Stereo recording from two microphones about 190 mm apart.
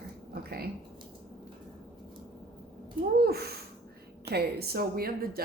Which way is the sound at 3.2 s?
55° right (ahead or behind).